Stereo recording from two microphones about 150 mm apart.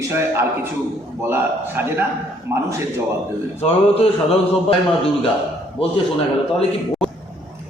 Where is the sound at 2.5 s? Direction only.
20° right (ahead or behind).